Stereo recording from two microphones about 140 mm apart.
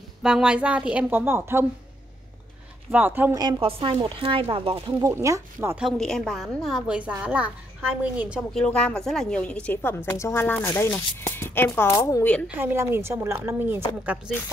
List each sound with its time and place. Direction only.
0.2 s a woman's voice: 5° right (ahead or behind)
2.9 s a woman's voice: 15° right (ahead or behind)
3.3 s speech: 30° right (ahead or behind)
5.0 s speech: 20° right (ahead or behind)
5.8 s a woman's voice: centre (ahead or behind)
8.5 s speech: 10° left (ahead or behind)
12.4 s a woman's voice: 15° right (ahead or behind)